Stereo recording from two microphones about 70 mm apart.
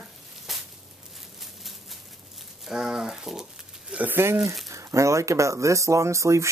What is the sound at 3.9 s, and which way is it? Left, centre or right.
Speech, right.